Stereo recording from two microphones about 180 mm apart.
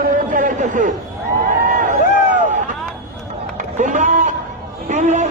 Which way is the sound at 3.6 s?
45° right (ahead or behind).